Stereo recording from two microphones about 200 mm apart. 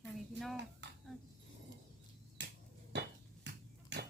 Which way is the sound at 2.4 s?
60° right (ahead or behind).